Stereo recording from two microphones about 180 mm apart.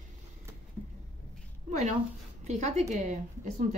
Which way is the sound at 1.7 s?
40° right (ahead or behind).